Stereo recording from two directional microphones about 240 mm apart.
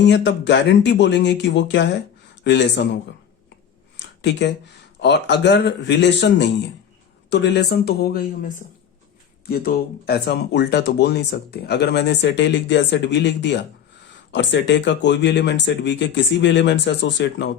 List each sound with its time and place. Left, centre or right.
0.0 s a man's voice: left
4.0 s a sound: left
4.9 s speech: left